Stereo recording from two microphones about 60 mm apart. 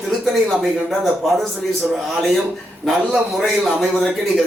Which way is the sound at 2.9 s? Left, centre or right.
Centre.